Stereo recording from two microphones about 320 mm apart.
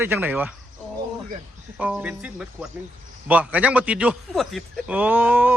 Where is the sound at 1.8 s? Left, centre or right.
Centre.